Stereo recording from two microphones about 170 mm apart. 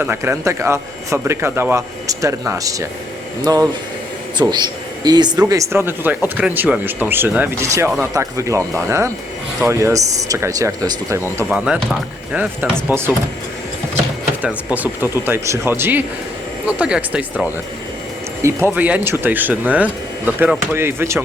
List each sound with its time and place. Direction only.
0.0 s speech: 15° right (ahead or behind)
11.4 s speech: 5° right (ahead or behind)
14.4 s speech: 10° right (ahead or behind)
18.4 s speech: 10° right (ahead or behind)